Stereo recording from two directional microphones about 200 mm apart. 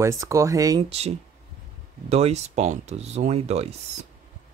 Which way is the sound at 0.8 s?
30° right (ahead or behind).